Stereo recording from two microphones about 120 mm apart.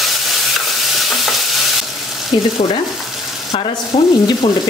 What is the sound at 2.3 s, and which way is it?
Frying, 40° left (ahead or behind).